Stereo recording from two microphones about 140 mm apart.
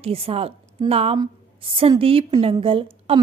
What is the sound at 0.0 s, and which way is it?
A woman's voice, 45° right (ahead or behind).